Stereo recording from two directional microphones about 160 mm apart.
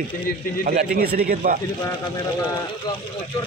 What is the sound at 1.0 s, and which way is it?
Speech, 65° right (ahead or behind).